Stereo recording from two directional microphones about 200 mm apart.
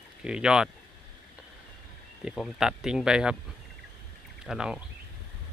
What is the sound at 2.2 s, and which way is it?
Speech, centre (ahead or behind).